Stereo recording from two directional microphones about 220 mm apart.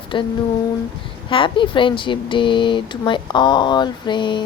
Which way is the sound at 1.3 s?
25° left (ahead or behind).